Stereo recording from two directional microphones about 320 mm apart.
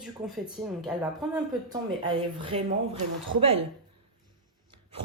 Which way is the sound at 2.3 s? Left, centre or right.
Centre.